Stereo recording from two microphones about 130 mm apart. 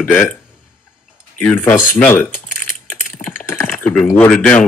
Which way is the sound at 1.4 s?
15° left (ahead or behind).